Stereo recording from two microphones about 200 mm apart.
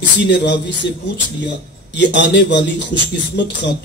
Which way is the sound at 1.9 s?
60° left (ahead or behind).